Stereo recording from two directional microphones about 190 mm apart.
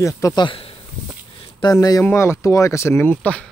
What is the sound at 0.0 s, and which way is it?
Speech, 20° left (ahead or behind).